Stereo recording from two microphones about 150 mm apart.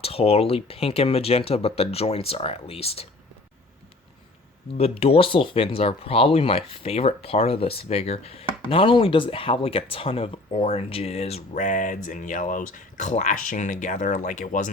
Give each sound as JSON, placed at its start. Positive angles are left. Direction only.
{"t": 0.0, "sound": "speech", "side_deg": 40}
{"t": 4.8, "sound": "speech", "side_deg": 40}